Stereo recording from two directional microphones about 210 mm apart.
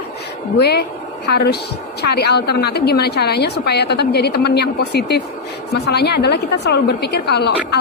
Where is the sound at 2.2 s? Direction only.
50° left (ahead or behind).